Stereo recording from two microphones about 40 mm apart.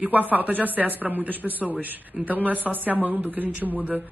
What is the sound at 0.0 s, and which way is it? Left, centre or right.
A woman's voice, right.